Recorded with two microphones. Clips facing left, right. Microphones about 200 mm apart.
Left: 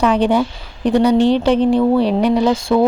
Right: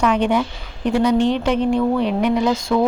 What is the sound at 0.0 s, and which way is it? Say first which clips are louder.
Speech: left 3 dB; 35° left (ahead or behind).